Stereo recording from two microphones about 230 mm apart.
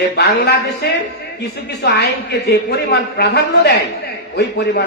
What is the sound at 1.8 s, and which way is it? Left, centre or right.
A man's voice, left.